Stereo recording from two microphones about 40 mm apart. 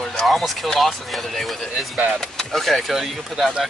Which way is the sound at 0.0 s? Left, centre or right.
Centre.